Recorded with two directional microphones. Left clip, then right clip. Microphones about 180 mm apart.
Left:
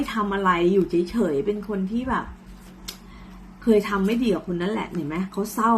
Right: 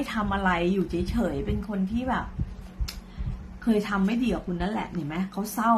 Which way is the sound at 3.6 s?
10° right (ahead or behind).